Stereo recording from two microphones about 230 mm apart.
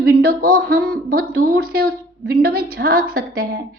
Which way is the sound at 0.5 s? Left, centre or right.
Right.